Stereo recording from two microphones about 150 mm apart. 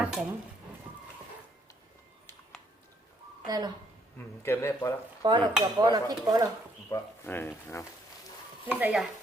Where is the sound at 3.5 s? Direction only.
25° right (ahead or behind).